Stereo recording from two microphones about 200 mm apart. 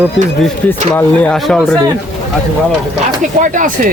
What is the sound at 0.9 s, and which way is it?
Speech, 5° left (ahead or behind).